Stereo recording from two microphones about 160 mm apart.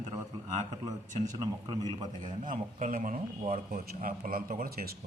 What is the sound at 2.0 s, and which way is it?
A man's voice, 55° right (ahead or behind).